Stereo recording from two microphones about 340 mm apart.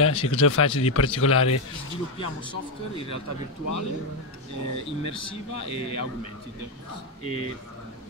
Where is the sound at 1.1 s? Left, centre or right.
Left.